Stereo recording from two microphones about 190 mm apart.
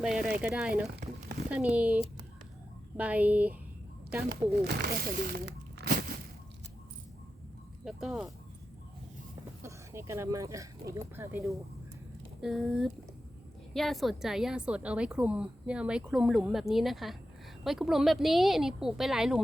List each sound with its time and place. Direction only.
0.0 s a woman's voice: 5° right (ahead or behind)
3.0 s speech: 10° right (ahead or behind)
4.3 s speech: 55° right (ahead or behind)
7.9 s a woman's voice: centre (ahead or behind)
9.6 s speech: 15° right (ahead or behind)
12.4 s a woman's voice: centre (ahead or behind)